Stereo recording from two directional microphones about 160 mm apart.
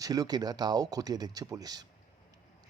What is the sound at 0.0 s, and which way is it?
A man's voice, 25° right (ahead or behind).